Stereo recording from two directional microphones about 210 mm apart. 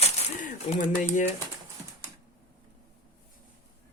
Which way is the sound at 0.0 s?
35° left (ahead or behind).